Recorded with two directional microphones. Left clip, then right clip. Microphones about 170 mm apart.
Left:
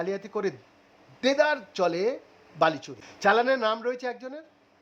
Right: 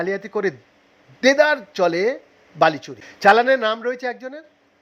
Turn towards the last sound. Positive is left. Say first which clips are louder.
# right 6 dB
turn(degrees=-10)  # may be behind; listen again after turning